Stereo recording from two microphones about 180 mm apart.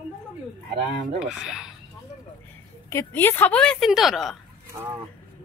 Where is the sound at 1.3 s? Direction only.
Centre (ahead or behind).